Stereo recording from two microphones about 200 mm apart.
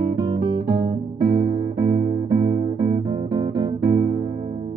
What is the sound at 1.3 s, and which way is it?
Music, 25° right (ahead or behind).